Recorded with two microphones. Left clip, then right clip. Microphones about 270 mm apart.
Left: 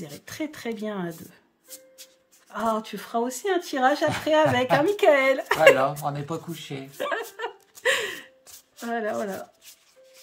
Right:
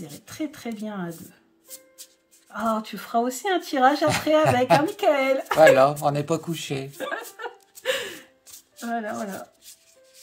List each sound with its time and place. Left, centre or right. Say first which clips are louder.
0.0 s speech: even; centre
2.5 s speech: even; centre
5.8 s a man's voice: right 6 dB; right
7.0 s music: left 2 dB; centre